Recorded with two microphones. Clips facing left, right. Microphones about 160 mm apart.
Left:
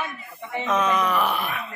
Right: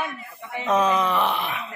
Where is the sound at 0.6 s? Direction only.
30° right (ahead or behind).